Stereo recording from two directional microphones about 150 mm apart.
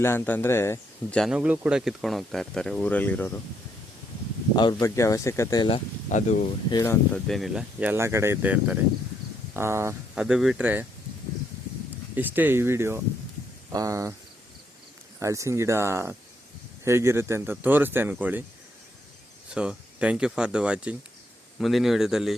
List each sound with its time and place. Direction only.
0.0 s speech: 15° left (ahead or behind)
1.1 s speech: centre (ahead or behind)
1.4 s speech: 10° right (ahead or behind); by 3.4 s 10° left (ahead or behind)
4.5 s speech: 30° left (ahead or behind)
6.1 s speech: 55° left (ahead or behind)
7.1 s speech: centre (ahead or behind); by 9.9 s 15° right (ahead or behind)
10.2 s speech: 5° right (ahead or behind)
12.1 s speech: 10° right (ahead or behind)
15.2 s speech: 20° right (ahead or behind)
19.5 s speech: 5° right (ahead or behind)